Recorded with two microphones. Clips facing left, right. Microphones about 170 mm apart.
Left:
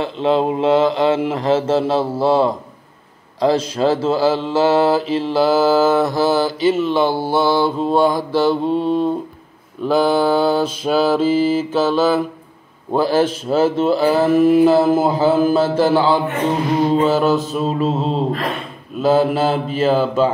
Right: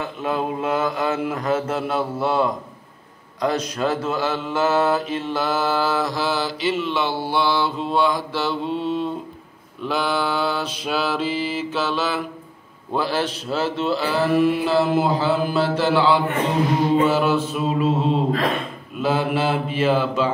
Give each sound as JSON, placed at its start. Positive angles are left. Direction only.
{"t": 0.0, "sound": "mantra", "side_deg": 25}
{"t": 6.0, "sound": "a sound", "side_deg": 50}
{"t": 17.0, "sound": "mantra", "side_deg": 40}
{"t": 19.0, "sound": "mantra", "side_deg": 40}